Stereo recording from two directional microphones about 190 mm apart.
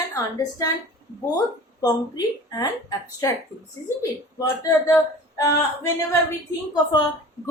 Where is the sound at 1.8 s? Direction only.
20° left (ahead or behind).